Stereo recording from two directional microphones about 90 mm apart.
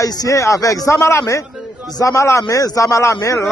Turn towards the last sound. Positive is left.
turn(degrees=35)  # may be behind; listen again after turning